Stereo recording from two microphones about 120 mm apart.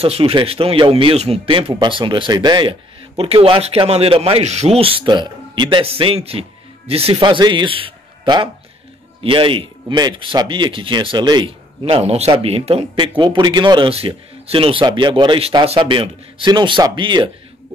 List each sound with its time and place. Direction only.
0.0 s speech: 50° right (ahead or behind)
3.2 s speech: 50° right (ahead or behind)
11.8 s a man's voice: 60° right (ahead or behind); by 17.3 s 40° right (ahead or behind)